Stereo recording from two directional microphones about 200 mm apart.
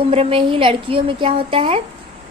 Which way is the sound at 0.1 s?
30° right (ahead or behind).